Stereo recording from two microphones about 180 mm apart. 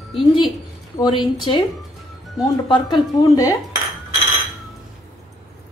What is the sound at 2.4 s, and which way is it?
Speech, 20° left (ahead or behind).